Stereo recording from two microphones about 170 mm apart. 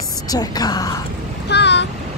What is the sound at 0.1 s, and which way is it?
Speech, 20° left (ahead or behind).